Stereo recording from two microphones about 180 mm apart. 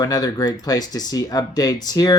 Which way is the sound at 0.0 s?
20° left (ahead or behind).